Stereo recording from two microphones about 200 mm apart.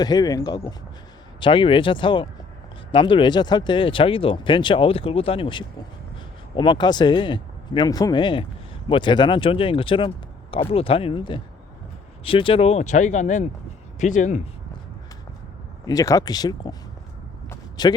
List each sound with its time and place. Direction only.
0.0 s speech: 20° left (ahead or behind); by 14.4 s 40° left (ahead or behind)
15.9 s speech: 20° left (ahead or behind)
17.5 s a sound: 20° left (ahead or behind)